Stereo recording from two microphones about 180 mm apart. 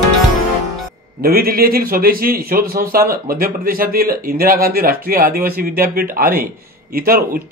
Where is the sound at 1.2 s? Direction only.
55° right (ahead or behind).